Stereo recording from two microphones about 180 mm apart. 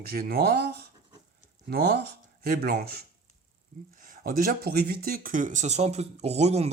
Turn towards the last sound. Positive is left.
turn(degrees=-35)  # may be behind; listen again after turning